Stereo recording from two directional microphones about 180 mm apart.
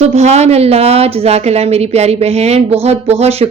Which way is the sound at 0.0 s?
40° right (ahead or behind).